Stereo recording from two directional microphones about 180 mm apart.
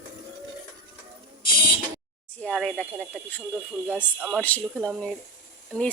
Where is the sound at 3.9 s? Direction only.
5° right (ahead or behind).